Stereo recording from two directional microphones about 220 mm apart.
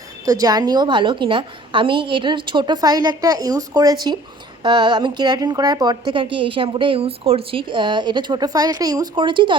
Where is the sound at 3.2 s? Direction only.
15° right (ahead or behind).